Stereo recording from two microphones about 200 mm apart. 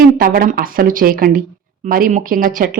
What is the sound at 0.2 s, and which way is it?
A woman's voice, 45° right (ahead or behind).